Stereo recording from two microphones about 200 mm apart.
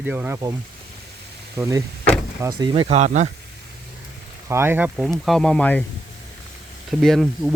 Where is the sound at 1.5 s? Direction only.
15° right (ahead or behind); by 3.3 s 35° right (ahead or behind).